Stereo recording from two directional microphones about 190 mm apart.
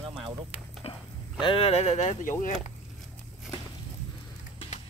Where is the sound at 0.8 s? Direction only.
30° left (ahead or behind).